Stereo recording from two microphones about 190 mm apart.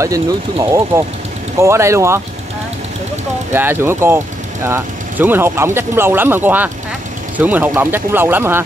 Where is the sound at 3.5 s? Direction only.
10° right (ahead or behind).